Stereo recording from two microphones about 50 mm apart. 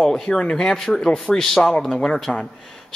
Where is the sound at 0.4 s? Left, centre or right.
Centre.